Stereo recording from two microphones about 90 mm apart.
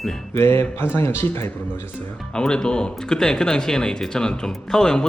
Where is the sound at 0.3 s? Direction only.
30° left (ahead or behind).